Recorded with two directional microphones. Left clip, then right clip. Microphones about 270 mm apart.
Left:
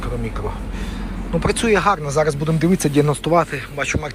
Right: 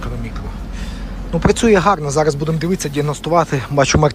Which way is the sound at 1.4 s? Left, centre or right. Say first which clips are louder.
Right 4 dB; centre.